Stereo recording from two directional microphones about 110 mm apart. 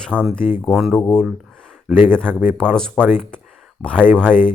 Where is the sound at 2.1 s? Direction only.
10° left (ahead or behind).